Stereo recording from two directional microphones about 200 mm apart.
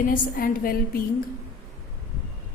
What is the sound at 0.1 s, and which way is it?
Speech, 45° left (ahead or behind).